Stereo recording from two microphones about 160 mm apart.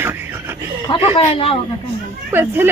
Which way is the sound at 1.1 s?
35° left (ahead or behind).